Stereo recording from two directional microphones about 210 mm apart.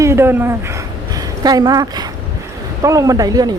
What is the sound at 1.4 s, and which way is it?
A man's voice, 20° right (ahead or behind).